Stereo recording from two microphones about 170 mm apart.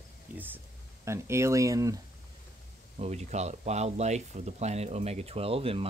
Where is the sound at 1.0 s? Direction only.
15° right (ahead or behind).